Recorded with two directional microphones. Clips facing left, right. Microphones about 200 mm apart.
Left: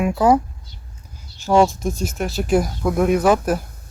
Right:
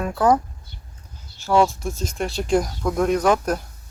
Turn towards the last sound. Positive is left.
turn(degrees=5)  # may be behind; listen again after turning